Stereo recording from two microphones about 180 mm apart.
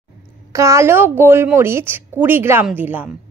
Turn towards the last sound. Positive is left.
turn(degrees=-10)  # may be behind; listen again after turning